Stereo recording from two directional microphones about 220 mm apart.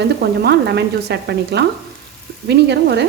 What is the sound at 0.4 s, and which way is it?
A woman's voice, 50° right (ahead or behind).